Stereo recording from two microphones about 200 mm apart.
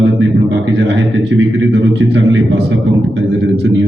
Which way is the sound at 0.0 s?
65° right (ahead or behind).